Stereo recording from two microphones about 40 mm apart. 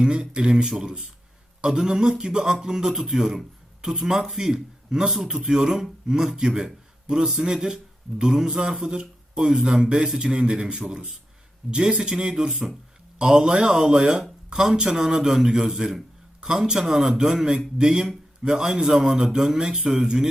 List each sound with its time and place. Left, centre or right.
0.0 s speech: right